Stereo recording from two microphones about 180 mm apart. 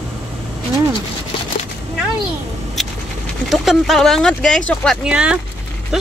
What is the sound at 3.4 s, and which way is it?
Speech, centre (ahead or behind).